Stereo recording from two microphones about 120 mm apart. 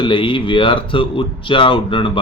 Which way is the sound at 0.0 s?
45° left (ahead or behind).